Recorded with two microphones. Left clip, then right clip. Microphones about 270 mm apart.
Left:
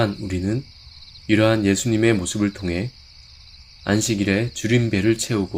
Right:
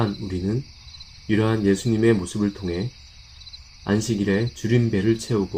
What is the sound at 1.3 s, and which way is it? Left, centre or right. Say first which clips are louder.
Speech: left 4 dB; left.